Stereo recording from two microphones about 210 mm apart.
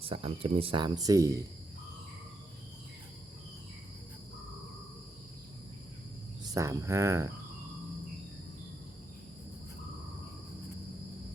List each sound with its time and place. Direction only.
0.0 s speech: 25° right (ahead or behind)
6.4 s cricket: 15° right (ahead or behind)